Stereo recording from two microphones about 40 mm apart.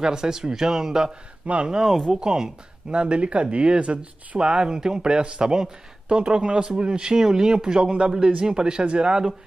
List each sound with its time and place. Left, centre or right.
0.0 s a man's voice: centre
1.5 s speech: right
1.8 s speech: centre
2.0 s speech: centre